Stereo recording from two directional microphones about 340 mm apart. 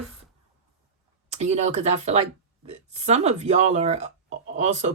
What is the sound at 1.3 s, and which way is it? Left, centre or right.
Speech, centre.